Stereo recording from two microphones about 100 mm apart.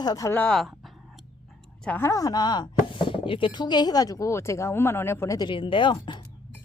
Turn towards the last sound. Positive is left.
turn(degrees=60)  # may be behind; listen again after turning